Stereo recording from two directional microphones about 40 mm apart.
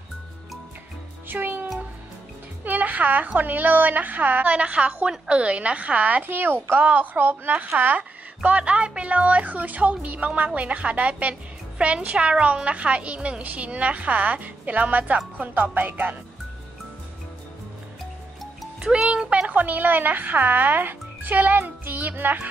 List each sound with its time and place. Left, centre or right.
1.3 s music: right
2.6 s music: right
3.3 s speech: right
4.5 s a woman's voice: right
6.2 s speech: right
7.5 s a woman's voice: right
19.0 s speech: right
19.5 s speech: right